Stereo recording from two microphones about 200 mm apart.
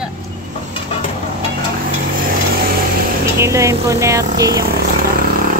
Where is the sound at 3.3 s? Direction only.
15° right (ahead or behind).